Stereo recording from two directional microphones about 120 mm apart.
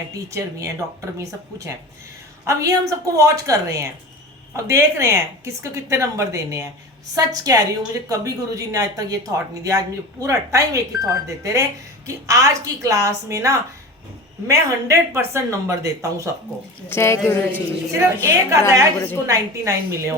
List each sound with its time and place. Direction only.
0.3 s a woman's voice: 25° right (ahead or behind)
16.9 s speech: 20° left (ahead or behind)
17.9 s a woman's voice: 25° right (ahead or behind)
18.9 s speech: 20° left (ahead or behind)
19.3 s a woman's voice: 25° right (ahead or behind)